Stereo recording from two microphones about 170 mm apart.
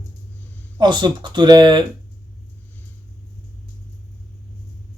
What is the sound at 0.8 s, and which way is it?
Speech, 25° right (ahead or behind).